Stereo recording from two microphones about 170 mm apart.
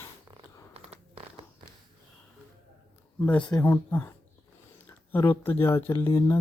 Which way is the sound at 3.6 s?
10° left (ahead or behind).